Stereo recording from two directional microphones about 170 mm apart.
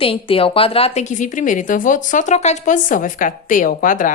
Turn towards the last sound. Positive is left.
turn(degrees=50)  # may be behind; listen again after turning